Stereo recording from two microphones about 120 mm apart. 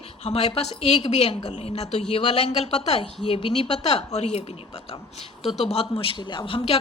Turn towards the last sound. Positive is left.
turn(degrees=50)  # may be behind; listen again after turning